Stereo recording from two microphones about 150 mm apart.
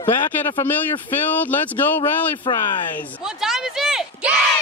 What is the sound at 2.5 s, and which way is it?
Speech, 35° left (ahead or behind).